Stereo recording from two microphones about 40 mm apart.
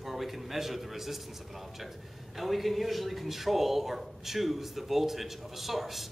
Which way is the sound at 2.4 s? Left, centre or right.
Centre.